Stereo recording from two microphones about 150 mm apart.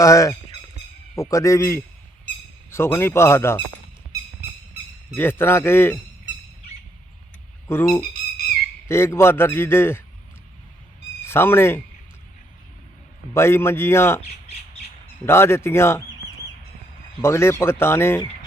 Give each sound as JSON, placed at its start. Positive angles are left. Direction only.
{"t": 0.0, "sound": "a man's voice", "side_deg": 20}
{"t": 5.1, "sound": "a man's voice", "side_deg": 15}
{"t": 7.7, "sound": "a man's voice", "side_deg": 15}
{"t": 11.3, "sound": "a man's voice", "side_deg": 15}
{"t": 13.3, "sound": "a man's voice", "side_deg": 15}
{"t": 15.3, "sound": "a man's voice", "side_deg": 15}
{"t": 17.2, "sound": "a man's voice", "side_deg": 15}